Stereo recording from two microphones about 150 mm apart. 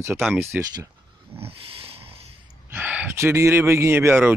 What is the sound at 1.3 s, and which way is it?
Dog, 40° right (ahead or behind).